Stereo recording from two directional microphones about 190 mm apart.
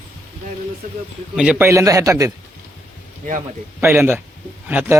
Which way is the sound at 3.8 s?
10° right (ahead or behind).